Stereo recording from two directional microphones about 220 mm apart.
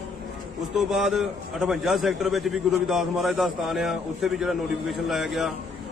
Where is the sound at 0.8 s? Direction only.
Centre (ahead or behind).